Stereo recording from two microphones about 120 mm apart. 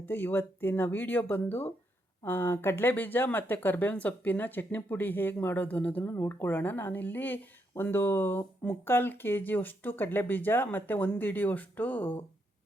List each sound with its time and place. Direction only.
0.0 s speech: 15° left (ahead or behind)